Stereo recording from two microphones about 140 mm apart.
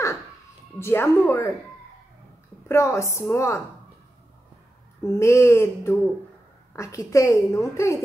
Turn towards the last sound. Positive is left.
turn(degrees=20)  # may be behind; listen again after turning